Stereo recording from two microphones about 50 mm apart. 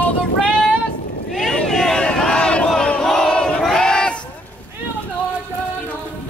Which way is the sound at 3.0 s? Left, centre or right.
Centre.